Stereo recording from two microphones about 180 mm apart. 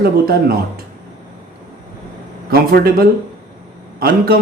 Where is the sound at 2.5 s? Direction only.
60° right (ahead or behind).